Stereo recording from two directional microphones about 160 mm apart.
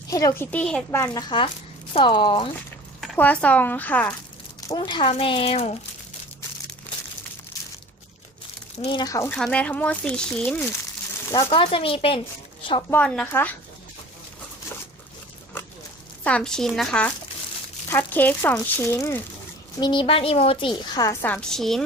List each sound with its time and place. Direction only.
0.1 s a woman's voice: 20° left (ahead or behind)
0.5 s speech: 5° left (ahead or behind)
0.9 s speech: 15° left (ahead or behind)
1.9 s speech: 35° left (ahead or behind)
3.2 s speech: 10° left (ahead or behind)
4.7 s speech: 30° left (ahead or behind)
6.9 s crumpling: 10° left (ahead or behind)
8.8 s speech: 35° left (ahead or behind)
9.0 s a woman's voice: 20° left (ahead or behind)
9.3 s speech: 5° left (ahead or behind)
11.4 s speech: 35° left (ahead or behind)
12.9 s speech: 10° left (ahead or behind)
16.2 s speech: 5° left (ahead or behind)
19.8 s a woman's voice: 30° left (ahead or behind); by 21.8 s centre (ahead or behind)